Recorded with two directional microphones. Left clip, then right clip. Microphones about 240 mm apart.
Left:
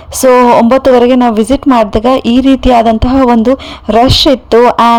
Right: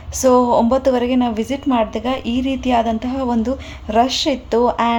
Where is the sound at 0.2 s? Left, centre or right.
Left.